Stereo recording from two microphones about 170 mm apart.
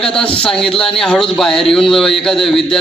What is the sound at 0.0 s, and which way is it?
Speech, 5° left (ahead or behind).